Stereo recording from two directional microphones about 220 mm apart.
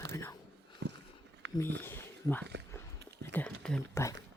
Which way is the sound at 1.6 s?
10° left (ahead or behind).